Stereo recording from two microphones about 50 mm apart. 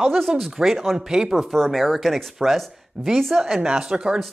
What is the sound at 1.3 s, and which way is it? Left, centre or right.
Speech, centre.